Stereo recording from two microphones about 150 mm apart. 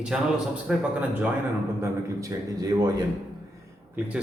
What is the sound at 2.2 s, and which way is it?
Speech, 20° right (ahead or behind).